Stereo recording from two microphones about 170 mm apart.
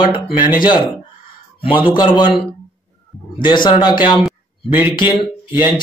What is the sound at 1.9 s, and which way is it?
Speech, 25° left (ahead or behind).